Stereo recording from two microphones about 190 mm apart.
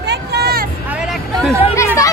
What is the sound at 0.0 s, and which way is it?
Vehicle, 60° right (ahead or behind).